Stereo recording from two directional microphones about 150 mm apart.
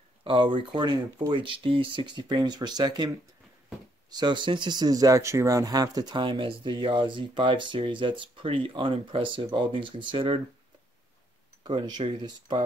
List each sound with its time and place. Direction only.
0.2 s speech: 35° right (ahead or behind)
11.6 s speech: 30° right (ahead or behind)